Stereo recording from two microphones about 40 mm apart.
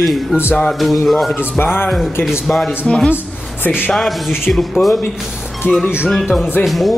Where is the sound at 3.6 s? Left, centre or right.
Left.